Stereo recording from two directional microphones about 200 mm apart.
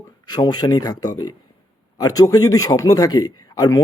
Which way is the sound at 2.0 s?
20° left (ahead or behind).